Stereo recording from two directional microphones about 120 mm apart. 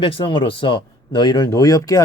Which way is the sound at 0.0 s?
45° left (ahead or behind).